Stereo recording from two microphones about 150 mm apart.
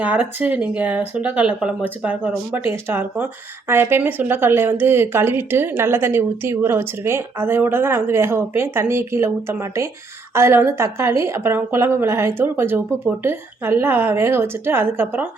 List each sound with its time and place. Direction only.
0.0 s speech: 10° right (ahead or behind)